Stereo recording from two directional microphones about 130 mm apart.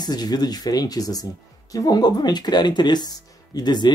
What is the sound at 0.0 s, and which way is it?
Speech, 30° left (ahead or behind).